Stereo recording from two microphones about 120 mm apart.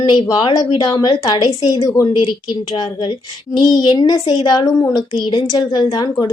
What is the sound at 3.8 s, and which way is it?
A woman's voice, 40° left (ahead or behind).